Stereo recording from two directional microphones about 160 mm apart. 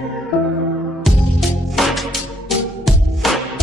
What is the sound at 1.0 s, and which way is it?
Music, centre (ahead or behind).